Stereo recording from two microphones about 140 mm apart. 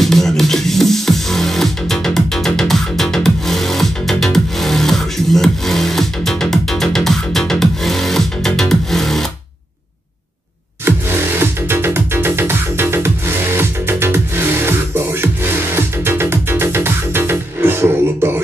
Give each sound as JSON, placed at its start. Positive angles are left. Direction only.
{"t": 0.0, "sound": "music", "side_deg": 0}
{"t": 10.9, "sound": "music", "side_deg": -15}